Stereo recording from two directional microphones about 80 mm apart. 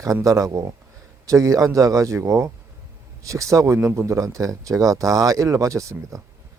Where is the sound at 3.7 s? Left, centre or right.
Right.